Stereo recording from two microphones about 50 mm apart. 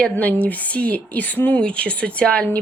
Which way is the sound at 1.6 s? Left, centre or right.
Left.